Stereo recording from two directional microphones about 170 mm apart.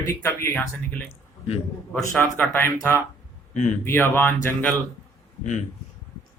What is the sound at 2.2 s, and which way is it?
Speech, 10° left (ahead or behind).